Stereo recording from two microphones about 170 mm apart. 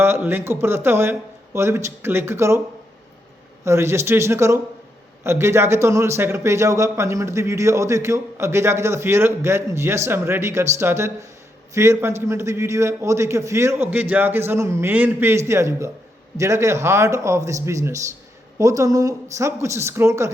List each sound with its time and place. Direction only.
0.0 s a man's voice: 15° right (ahead or behind)
3.6 s a man's voice: 15° right (ahead or behind)